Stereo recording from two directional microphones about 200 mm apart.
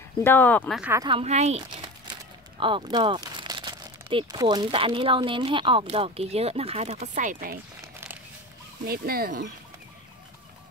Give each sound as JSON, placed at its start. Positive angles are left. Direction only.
{"t": 0.2, "sound": "speech", "side_deg": 10}
{"t": 0.9, "sound": "speech", "side_deg": -25}
{"t": 8.8, "sound": "speech", "side_deg": -50}